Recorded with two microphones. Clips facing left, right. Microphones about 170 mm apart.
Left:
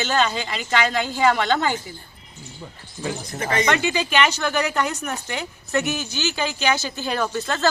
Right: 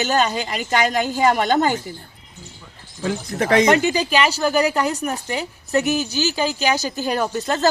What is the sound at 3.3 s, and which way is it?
Speech, 70° right (ahead or behind).